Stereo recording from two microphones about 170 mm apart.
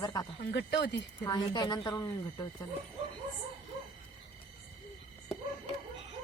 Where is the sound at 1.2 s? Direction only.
25° left (ahead or behind).